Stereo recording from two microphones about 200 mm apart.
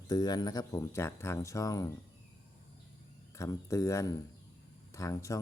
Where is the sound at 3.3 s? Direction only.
15° left (ahead or behind).